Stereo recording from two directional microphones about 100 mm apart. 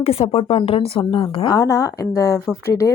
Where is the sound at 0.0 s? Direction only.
85° left; by 1.5 s 65° left (ahead or behind).